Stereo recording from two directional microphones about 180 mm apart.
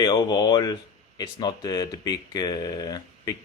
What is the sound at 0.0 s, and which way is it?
Speech, 25° left (ahead or behind).